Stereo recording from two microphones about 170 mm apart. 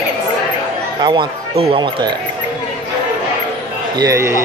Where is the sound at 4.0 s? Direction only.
20° right (ahead or behind).